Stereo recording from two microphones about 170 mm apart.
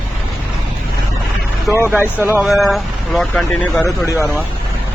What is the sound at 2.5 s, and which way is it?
Speech, centre (ahead or behind).